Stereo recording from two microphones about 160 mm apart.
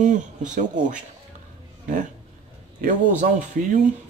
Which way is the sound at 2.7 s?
50° right (ahead or behind).